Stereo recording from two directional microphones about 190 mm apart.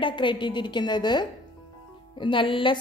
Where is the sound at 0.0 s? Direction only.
25° left (ahead or behind).